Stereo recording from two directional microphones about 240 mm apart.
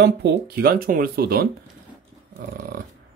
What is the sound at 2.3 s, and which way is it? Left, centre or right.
Dog, right.